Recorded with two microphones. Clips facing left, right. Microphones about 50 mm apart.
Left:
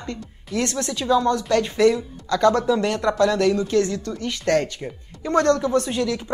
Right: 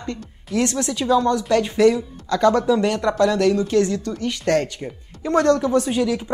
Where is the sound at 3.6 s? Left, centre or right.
Right.